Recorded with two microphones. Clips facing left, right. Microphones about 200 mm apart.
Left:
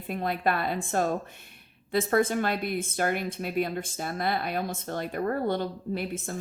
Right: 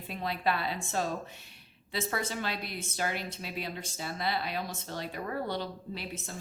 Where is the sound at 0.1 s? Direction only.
50° left (ahead or behind).